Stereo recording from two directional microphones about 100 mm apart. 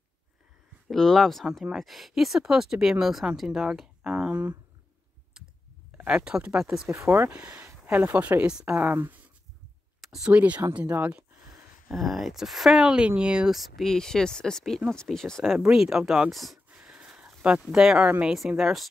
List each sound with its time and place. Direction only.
0.8 s speech: 5° left (ahead or behind); by 4.6 s 15° right (ahead or behind)
5.9 s speech: 10° right (ahead or behind)
6.9 s speech: 25° right (ahead or behind)
11.9 s speech: centre (ahead or behind)
16.7 s a sound: 10° right (ahead or behind)
17.6 s speech: 10° right (ahead or behind)